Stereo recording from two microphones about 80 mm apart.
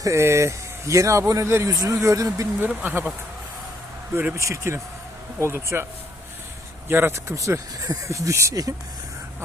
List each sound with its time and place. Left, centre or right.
0.0 s speech: right
2.8 s speech: right
4.4 s speech: right
6.8 s speech: right